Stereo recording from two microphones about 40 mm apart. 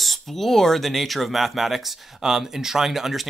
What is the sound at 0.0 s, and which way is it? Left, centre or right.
Speech, centre.